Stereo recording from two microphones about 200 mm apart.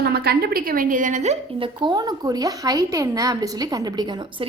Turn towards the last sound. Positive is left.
turn(degrees=-25)  # may be behind; listen again after turning